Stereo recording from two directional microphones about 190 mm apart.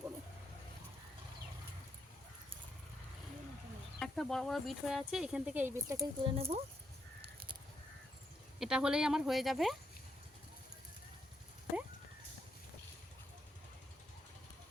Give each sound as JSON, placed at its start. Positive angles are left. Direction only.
{"t": 4.0, "sound": "speech", "side_deg": 0}
{"t": 6.0, "sound": "speech", "side_deg": -30}
{"t": 8.5, "sound": "speech", "side_deg": -5}